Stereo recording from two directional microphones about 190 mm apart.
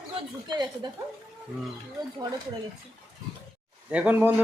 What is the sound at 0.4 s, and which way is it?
Speech, 20° right (ahead or behind).